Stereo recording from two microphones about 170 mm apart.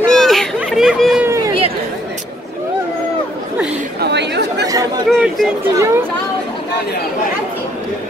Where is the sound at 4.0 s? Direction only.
85° right.